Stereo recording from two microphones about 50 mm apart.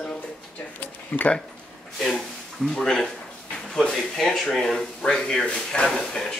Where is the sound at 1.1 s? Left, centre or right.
Left.